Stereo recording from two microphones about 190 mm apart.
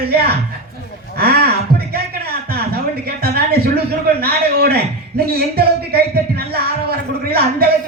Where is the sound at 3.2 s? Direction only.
55° right (ahead or behind).